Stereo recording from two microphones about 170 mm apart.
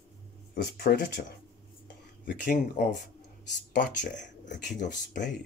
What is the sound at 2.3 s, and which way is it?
Speech, 50° left (ahead or behind).